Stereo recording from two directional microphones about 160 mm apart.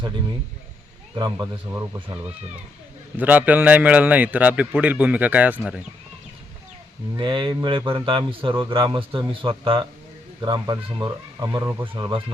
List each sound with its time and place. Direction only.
1.1 s speech: 25° right (ahead or behind)
3.2 s a man's voice: 10° right (ahead or behind)
7.2 s a man's voice: 30° right (ahead or behind)